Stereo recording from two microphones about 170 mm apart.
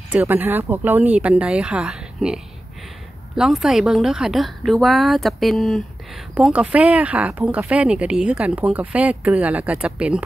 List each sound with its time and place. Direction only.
0.1 s a woman's voice: 10° right (ahead or behind)